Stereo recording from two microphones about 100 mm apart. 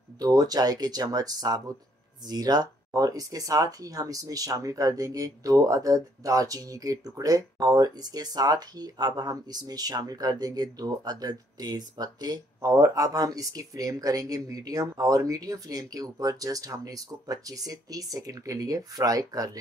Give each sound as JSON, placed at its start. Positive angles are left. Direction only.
{"t": 0.2, "sound": "speech", "side_deg": -40}